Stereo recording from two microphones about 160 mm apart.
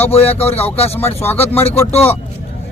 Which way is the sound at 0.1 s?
40° left (ahead or behind).